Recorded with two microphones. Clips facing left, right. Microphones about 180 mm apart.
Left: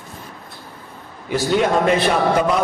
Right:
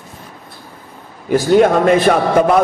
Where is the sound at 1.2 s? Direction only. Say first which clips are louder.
Right 7 dB; 50° right (ahead or behind).